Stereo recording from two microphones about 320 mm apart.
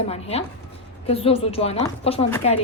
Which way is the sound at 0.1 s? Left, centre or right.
Centre.